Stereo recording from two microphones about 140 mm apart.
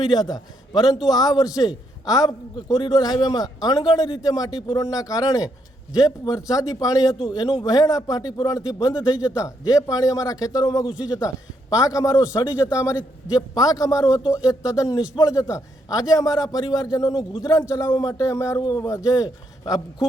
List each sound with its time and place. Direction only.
0.1 s a man's voice: 30° left (ahead or behind)